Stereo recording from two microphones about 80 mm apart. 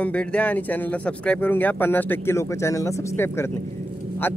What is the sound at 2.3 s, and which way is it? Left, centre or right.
Speech, left.